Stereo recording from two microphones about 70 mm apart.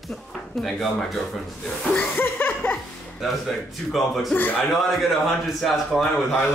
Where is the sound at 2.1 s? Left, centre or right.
Left.